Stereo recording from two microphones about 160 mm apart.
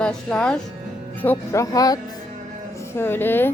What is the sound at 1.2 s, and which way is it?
A woman's voice, 15° left (ahead or behind).